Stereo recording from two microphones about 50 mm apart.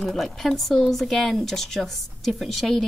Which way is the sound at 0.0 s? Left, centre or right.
Centre.